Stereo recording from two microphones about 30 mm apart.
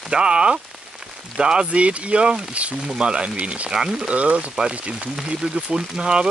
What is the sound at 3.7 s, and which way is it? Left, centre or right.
Speech, centre.